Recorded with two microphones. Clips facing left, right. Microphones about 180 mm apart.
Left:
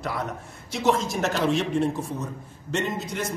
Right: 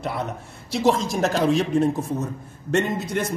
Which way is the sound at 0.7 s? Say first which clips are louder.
Right 3 dB; 35° right (ahead or behind).